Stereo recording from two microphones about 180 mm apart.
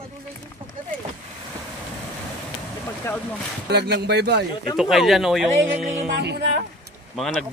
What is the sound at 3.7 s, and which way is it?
Speech, 65° right (ahead or behind).